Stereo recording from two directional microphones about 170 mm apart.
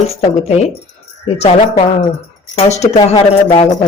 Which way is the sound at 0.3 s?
40° left (ahead or behind).